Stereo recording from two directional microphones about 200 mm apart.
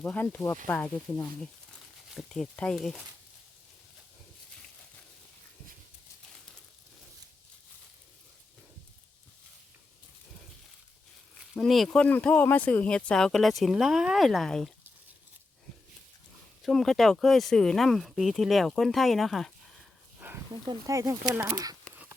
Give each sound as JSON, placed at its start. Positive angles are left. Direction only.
{"t": 0.0, "sound": "speech", "side_deg": 5}
{"t": 11.5, "sound": "speech", "side_deg": 0}
{"t": 16.6, "sound": "speech", "side_deg": 0}
{"t": 20.1, "sound": "dog", "side_deg": -10}
{"t": 20.5, "sound": "speech", "side_deg": -20}